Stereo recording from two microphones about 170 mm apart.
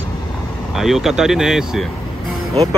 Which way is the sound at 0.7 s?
Centre (ahead or behind).